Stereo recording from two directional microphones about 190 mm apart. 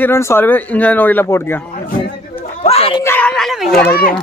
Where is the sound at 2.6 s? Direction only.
30° left (ahead or behind).